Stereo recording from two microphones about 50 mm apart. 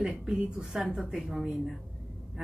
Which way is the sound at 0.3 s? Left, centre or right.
Centre.